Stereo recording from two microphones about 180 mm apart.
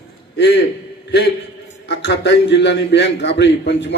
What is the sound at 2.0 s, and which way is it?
A man's voice, 70° left (ahead or behind).